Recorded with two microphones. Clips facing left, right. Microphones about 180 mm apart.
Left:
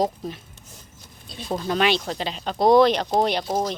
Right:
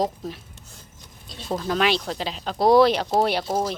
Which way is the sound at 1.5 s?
Centre (ahead or behind).